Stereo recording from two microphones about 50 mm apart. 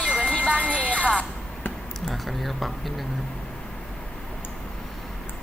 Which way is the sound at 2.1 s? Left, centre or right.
Centre.